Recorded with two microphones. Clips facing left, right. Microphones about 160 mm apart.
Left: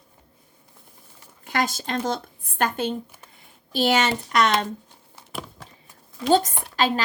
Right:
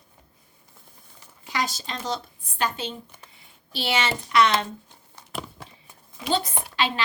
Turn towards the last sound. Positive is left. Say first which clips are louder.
# left 4 dB
turn(degrees=45)  # may be behind; listen again after turning